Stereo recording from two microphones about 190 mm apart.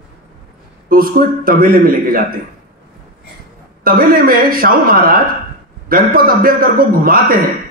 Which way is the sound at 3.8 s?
50° right (ahead or behind).